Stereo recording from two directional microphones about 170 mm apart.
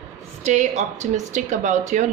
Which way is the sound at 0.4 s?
45° right (ahead or behind).